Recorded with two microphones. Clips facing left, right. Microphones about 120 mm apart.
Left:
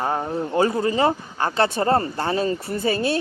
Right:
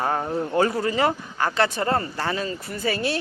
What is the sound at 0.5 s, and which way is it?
Speech, 25° left (ahead or behind).